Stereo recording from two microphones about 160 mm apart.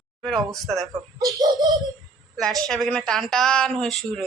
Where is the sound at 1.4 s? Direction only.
25° right (ahead or behind).